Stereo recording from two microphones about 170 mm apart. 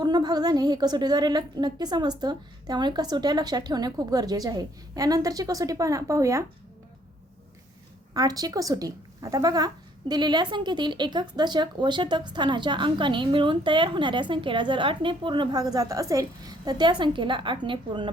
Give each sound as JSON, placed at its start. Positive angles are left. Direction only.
{"t": 0.0, "sound": "a woman's voice", "side_deg": -25}
{"t": 8.1, "sound": "a woman's voice", "side_deg": -20}